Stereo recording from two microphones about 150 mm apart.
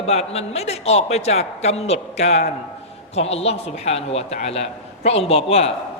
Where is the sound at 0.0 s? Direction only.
45° left (ahead or behind).